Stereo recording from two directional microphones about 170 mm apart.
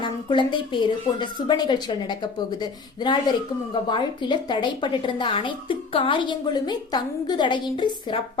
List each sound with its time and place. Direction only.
0.0 s a woman's voice: 30° left (ahead or behind)